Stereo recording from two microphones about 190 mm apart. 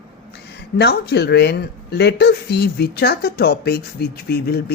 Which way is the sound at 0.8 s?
60° left (ahead or behind).